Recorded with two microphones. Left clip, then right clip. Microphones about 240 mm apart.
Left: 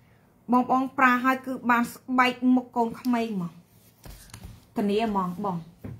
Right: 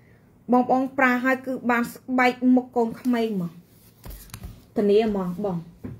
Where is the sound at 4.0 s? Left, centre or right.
Right.